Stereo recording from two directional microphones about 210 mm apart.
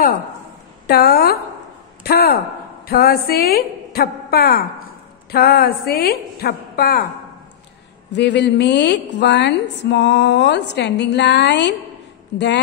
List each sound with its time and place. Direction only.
0.8 s a woman's voice: 50° left (ahead or behind)
8.1 s a woman's voice: 55° left (ahead or behind)